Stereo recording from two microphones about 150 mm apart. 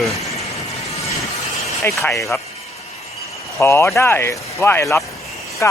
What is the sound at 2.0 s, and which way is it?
Speech, 20° left (ahead or behind).